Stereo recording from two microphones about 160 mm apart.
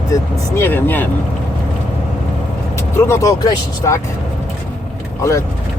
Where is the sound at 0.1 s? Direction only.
15° left (ahead or behind).